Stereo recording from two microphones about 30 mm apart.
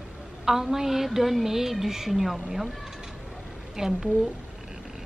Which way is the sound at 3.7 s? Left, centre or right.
Centre.